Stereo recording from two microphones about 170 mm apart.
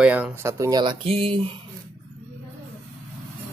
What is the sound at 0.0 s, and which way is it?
Speech, 10° right (ahead or behind).